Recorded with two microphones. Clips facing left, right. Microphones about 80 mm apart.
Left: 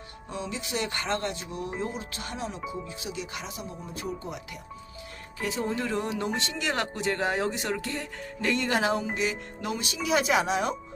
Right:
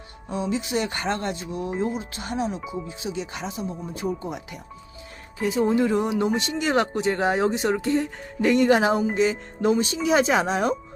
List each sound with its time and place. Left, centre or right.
0.3 s speech: right
5.4 s speech: right